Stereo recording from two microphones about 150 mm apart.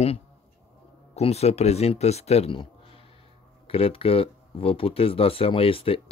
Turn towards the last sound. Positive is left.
turn(degrees=40)  # may be behind; listen again after turning